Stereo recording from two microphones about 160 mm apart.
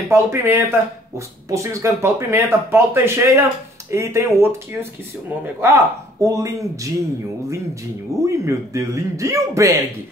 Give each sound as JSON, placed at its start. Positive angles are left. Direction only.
{"t": 0.1, "sound": "speech", "side_deg": -15}
{"t": 5.6, "sound": "speech", "side_deg": -15}
{"t": 8.3, "sound": "speech", "side_deg": -20}